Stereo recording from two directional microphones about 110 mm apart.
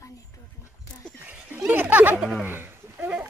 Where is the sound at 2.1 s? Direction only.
5° right (ahead or behind).